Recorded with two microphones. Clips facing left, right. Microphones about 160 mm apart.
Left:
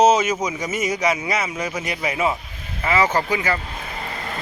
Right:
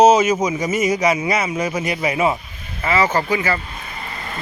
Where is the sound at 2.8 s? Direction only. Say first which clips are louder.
Right 1 dB; 10° left (ahead or behind).